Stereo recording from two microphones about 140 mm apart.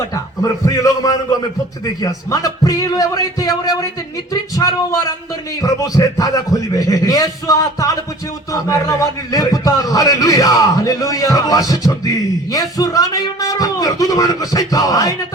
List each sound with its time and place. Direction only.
0.6 s a man's voice: 25° left (ahead or behind)